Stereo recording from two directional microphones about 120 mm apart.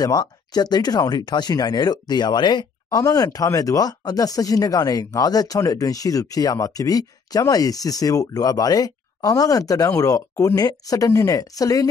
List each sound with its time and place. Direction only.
0.0 s speech: 35° left (ahead or behind)